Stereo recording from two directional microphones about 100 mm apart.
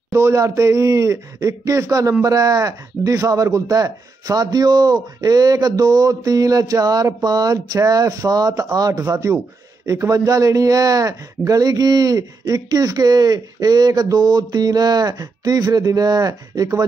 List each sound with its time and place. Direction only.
0.1 s speech: 30° right (ahead or behind)